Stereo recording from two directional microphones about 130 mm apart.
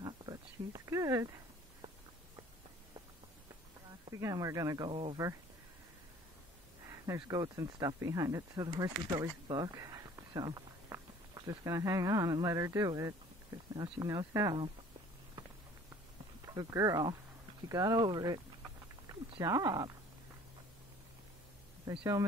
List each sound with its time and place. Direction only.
0.0 s a sound: 30° right (ahead or behind)
4.1 s speech: 25° right (ahead or behind)
6.9 s speech: 25° right (ahead or behind)
16.5 s speech: 25° right (ahead or behind)
21.9 s speech: 30° right (ahead or behind)